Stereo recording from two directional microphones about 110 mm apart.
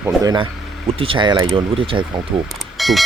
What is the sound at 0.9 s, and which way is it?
Speech, 55° right (ahead or behind).